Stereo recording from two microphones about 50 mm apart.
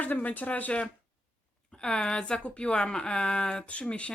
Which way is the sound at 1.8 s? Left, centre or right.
Centre.